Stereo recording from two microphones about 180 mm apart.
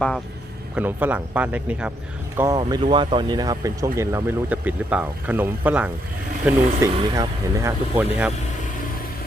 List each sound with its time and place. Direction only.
0.8 s speech: 10° right (ahead or behind)